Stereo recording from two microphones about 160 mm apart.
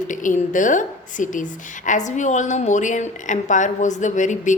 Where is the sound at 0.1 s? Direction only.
55° left (ahead or behind).